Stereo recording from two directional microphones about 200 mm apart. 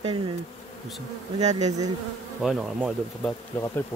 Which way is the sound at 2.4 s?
Centre (ahead or behind).